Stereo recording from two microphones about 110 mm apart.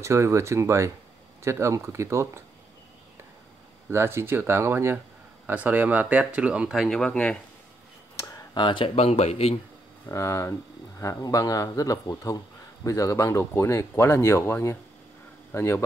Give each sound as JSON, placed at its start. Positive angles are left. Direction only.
{"t": 0.0, "sound": "speech", "side_deg": -25}
{"t": 3.9, "sound": "speech", "side_deg": -25}
{"t": 7.0, "sound": "speech", "side_deg": 10}
{"t": 8.2, "sound": "a sound", "side_deg": 30}
{"t": 8.6, "sound": "speech", "side_deg": 55}
{"t": 10.0, "sound": "a man's voice", "side_deg": 25}